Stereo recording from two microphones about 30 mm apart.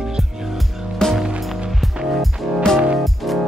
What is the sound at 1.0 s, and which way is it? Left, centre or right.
Music, left.